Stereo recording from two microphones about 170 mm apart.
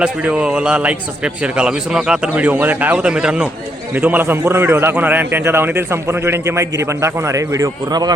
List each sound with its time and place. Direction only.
0.0 s a man's voice: 5° right (ahead or behind); by 8.1 s 25° right (ahead or behind)